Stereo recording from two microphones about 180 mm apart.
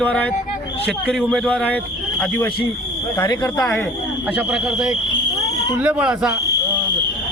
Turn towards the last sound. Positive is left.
turn(degrees=-5)  # may be behind; listen again after turning